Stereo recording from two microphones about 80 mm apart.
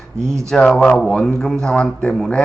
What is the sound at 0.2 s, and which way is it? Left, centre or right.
Speech, right.